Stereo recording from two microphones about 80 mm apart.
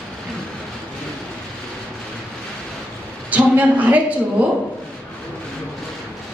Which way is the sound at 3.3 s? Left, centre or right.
Centre.